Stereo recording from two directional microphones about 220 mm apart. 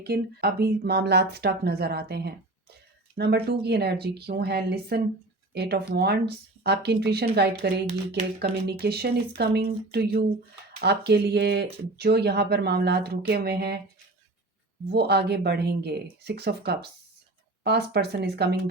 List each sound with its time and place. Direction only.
0.0 s speech: 45° right (ahead or behind)
14.8 s speech: 45° right (ahead or behind)